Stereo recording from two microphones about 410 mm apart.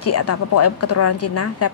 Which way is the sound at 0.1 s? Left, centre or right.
Left.